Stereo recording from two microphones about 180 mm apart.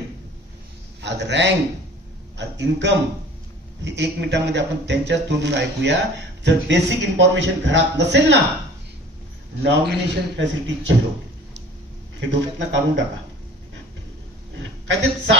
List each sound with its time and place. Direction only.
1.0 s a man's voice: 75° right (ahead or behind)
9.6 s a man's voice: 75° right (ahead or behind)
12.2 s speech: 85° right